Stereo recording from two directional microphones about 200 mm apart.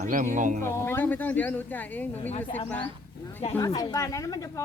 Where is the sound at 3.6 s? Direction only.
20° left (ahead or behind).